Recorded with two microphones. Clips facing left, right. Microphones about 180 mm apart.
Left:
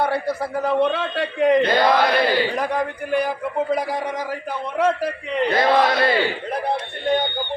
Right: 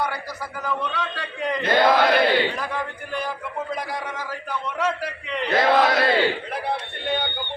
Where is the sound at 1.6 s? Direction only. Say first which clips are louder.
Left 1 dB; 5° right (ahead or behind).